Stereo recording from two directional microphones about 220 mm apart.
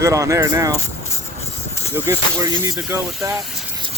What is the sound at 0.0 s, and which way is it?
Speech, 15° right (ahead or behind).